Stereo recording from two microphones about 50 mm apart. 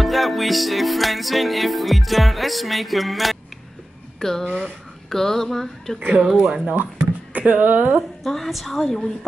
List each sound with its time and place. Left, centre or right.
0.0 s music: centre
4.2 s speech: centre
4.5 s speech: right
5.1 s speech: centre
5.9 s speech: right
6.2 s speech: centre
7.3 s speech: right
8.2 s music: centre